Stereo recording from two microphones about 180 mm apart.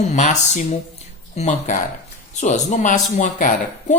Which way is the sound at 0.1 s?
40° left (ahead or behind).